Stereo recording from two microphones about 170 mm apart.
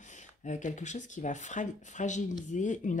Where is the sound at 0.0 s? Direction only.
45° left (ahead or behind).